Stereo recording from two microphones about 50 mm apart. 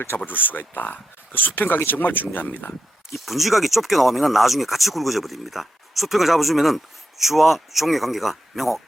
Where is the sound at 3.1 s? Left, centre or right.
Centre.